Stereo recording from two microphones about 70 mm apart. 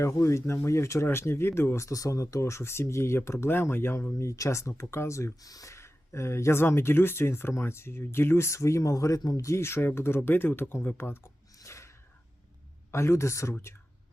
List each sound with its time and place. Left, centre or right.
0.0 s speech: left
9.4 s speech: left
12.9 s speech: left